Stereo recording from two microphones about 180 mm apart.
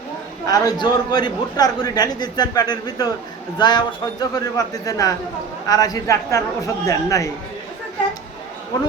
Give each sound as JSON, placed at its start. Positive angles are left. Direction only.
{"t": 0.4, "sound": "a man's voice", "side_deg": 20}
{"t": 8.7, "sound": "a man's voice", "side_deg": 20}